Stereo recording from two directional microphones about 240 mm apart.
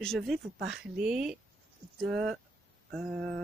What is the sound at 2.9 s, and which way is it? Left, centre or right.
Speech, centre.